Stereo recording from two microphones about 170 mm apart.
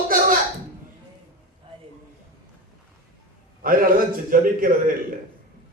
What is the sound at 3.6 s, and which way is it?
A man's voice, 55° right (ahead or behind).